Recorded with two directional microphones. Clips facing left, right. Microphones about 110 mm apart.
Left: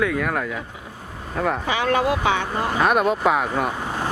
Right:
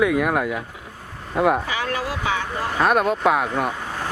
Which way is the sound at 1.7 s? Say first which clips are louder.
Left 5 dB; 25° left (ahead or behind).